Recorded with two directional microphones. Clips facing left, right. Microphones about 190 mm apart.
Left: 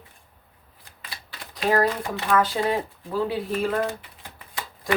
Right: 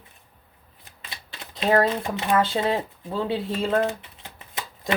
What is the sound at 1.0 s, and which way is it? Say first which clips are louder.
Speech: even; 25° right (ahead or behind).